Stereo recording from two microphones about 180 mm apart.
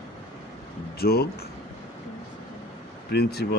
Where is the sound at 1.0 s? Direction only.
60° left (ahead or behind).